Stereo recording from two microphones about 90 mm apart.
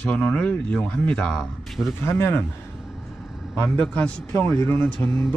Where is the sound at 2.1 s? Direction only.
25° left (ahead or behind).